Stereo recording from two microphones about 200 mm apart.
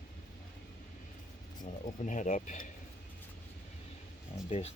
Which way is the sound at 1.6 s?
40° left (ahead or behind).